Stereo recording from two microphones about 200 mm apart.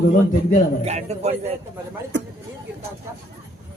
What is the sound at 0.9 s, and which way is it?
Speech, 30° right (ahead or behind).